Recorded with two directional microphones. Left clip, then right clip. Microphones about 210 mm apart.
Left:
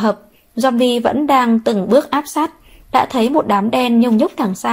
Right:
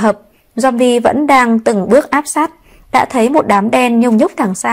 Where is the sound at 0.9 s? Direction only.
25° right (ahead or behind).